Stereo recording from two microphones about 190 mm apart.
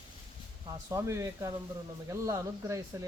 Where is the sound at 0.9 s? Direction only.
15° right (ahead or behind).